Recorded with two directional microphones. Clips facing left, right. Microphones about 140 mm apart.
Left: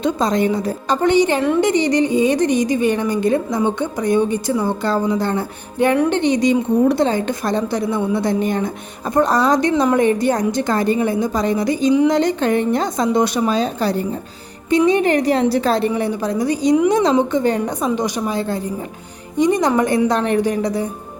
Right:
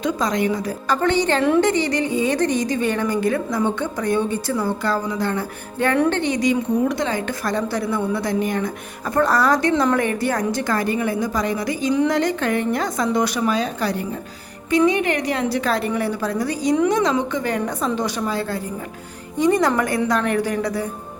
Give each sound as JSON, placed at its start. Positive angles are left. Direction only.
{"t": 0.0, "sound": "a woman's voice", "side_deg": 25}
{"t": 1.0, "sound": "a woman's voice", "side_deg": 15}
{"t": 1.4, "sound": "speech", "side_deg": 0}
{"t": 1.6, "sound": "a woman's voice", "side_deg": 15}
{"t": 16.0, "sound": "a woman's voice", "side_deg": 20}
{"t": 16.9, "sound": "a woman's voice", "side_deg": 30}